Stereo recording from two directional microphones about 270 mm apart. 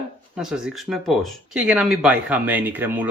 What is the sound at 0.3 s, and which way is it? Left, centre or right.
Speech, centre.